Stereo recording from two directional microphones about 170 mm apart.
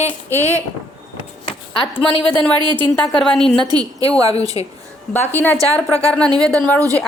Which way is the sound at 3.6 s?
25° right (ahead or behind).